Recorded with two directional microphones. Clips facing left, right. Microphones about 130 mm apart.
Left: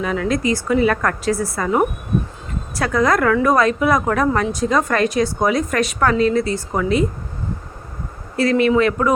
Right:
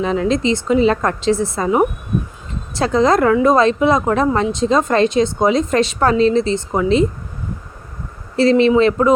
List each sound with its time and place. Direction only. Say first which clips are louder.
0.0 s speech: right 3 dB; 25° right (ahead or behind)
8.4 s speech: right 3 dB; 25° right (ahead or behind)